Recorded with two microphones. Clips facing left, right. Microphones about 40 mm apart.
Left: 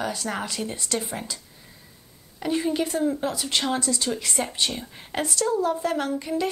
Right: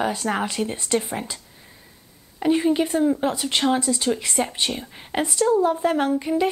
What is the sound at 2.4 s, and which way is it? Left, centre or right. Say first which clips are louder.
A woman's voice: right 5 dB; right.